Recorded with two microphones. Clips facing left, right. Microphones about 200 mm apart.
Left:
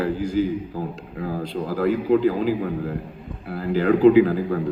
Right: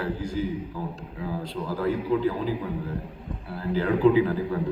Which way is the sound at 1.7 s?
90° left.